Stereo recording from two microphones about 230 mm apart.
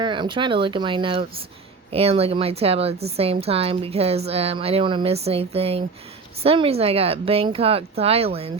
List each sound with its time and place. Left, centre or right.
0.0 s a woman's voice: right